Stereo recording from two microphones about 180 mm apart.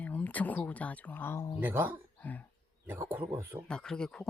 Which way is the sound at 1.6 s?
10° right (ahead or behind).